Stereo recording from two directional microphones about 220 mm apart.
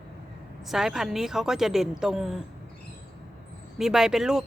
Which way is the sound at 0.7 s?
Centre (ahead or behind).